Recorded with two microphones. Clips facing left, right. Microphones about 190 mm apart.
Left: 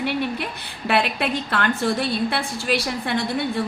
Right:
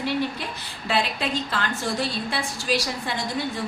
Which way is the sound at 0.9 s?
60° left (ahead or behind).